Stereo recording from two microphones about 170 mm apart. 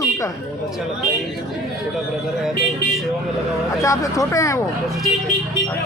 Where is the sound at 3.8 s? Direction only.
20° left (ahead or behind).